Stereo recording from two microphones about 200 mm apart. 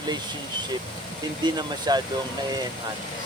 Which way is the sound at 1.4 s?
20° right (ahead or behind).